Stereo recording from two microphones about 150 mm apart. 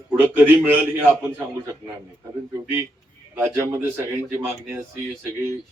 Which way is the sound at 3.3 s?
20° right (ahead or behind).